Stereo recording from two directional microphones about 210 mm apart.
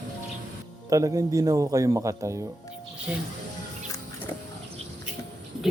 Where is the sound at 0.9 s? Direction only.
15° right (ahead or behind).